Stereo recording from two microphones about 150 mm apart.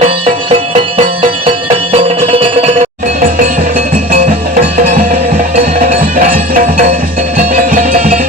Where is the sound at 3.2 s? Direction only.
65° right (ahead or behind).